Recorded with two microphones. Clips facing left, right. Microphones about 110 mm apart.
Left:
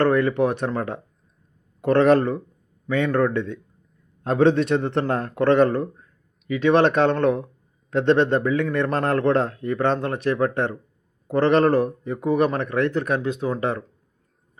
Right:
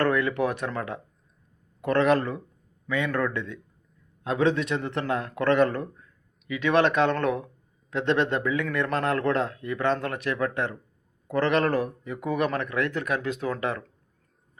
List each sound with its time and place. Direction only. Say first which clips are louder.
0.0 s speech: left 5 dB; 35° left (ahead or behind)
5.4 s speech: left 5 dB; 30° left (ahead or behind)